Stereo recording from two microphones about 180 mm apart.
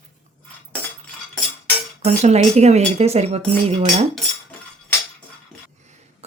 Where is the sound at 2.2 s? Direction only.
40° right (ahead or behind).